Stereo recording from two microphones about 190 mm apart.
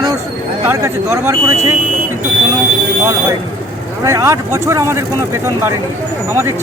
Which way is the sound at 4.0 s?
15° right (ahead or behind).